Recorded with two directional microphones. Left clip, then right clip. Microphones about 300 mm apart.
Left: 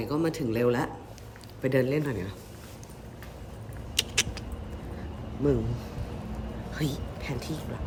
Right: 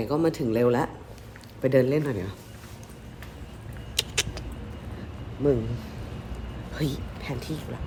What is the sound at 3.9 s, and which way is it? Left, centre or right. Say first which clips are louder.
Rodents: even; centre.